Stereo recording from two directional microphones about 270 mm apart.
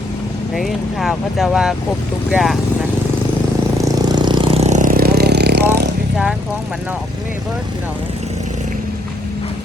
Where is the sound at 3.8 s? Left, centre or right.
Centre; by 5.7 s right.